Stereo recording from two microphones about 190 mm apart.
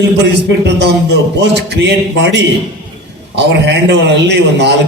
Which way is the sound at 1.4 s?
65° right (ahead or behind).